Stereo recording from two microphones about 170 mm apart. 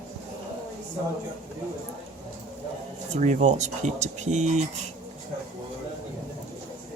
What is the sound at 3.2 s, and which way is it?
Speech, 45° right (ahead or behind).